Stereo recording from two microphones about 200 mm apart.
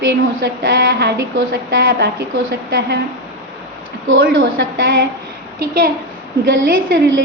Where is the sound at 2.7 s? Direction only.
55° right (ahead or behind).